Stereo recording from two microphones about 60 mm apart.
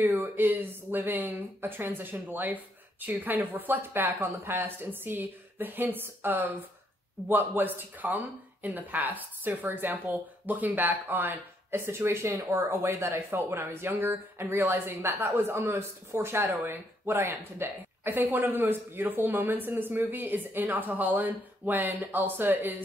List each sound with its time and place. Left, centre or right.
0.0 s speech: right
11.7 s speech: right